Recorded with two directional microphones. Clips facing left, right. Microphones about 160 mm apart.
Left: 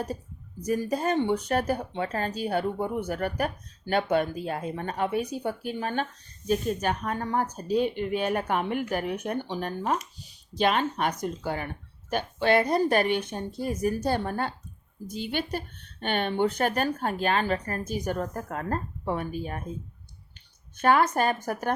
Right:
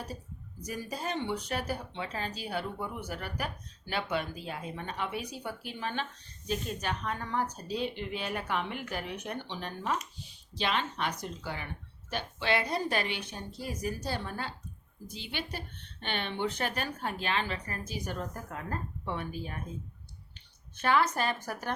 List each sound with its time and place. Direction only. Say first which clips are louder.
0.6 s speech: left 10 dB; 45° left (ahead or behind)
20.8 s speech: left 6 dB; 50° left (ahead or behind)